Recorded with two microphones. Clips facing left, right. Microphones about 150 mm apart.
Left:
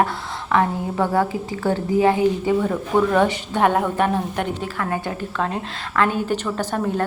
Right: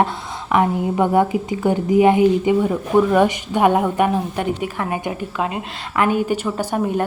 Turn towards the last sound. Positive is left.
turn(degrees=-15)  # may be behind; listen again after turning